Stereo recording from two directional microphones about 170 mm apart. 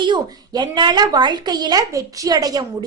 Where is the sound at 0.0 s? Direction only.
25° right (ahead or behind).